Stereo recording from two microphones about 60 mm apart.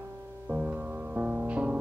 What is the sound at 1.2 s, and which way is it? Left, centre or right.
Music, right.